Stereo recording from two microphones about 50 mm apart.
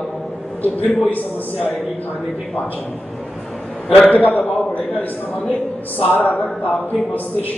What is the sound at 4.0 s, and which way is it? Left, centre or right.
Speech, left.